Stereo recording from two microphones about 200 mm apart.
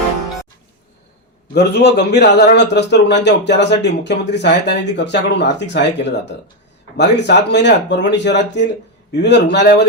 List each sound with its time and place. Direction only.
1.5 s a man's voice: 55° left (ahead or behind)